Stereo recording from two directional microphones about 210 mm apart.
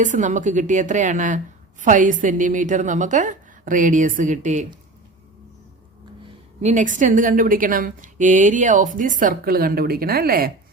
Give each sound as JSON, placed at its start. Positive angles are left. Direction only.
{"t": 0.0, "sound": "a woman's voice", "side_deg": -35}
{"t": 6.6, "sound": "a woman's voice", "side_deg": -35}